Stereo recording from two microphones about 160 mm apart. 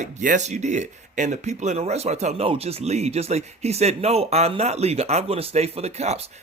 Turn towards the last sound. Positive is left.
turn(degrees=-45)  # may be behind; listen again after turning